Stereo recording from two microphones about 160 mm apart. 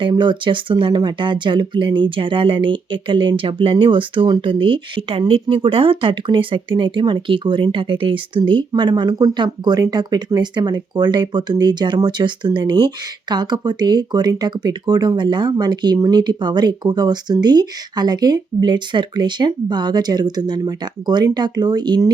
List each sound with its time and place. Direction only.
0.0 s speech: 30° right (ahead or behind)